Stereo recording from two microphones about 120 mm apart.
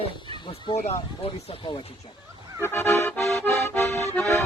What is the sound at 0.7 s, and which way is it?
Speech, 60° left (ahead or behind).